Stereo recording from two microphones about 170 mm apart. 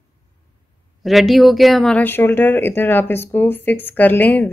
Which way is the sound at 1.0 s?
Centre (ahead or behind).